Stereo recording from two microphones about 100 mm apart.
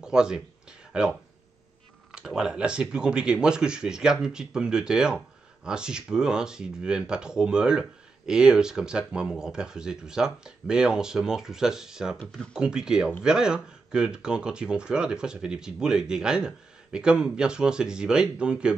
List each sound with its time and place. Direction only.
0.0 s speech: 5° right (ahead or behind)
2.1 s speech: 5° right (ahead or behind)